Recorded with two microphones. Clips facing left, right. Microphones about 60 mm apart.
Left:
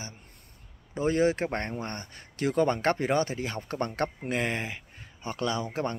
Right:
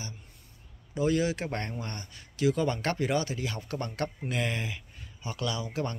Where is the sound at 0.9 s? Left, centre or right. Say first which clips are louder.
Left 2 dB; left.